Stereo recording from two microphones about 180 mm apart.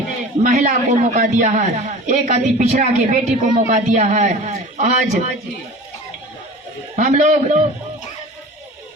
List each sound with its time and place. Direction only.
0.4 s a woman's voice: 45° right (ahead or behind)
6.9 s a woman's voice: 40° right (ahead or behind)